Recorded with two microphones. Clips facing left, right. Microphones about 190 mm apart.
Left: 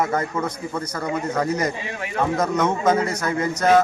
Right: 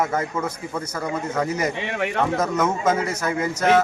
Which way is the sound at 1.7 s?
75° right (ahead or behind).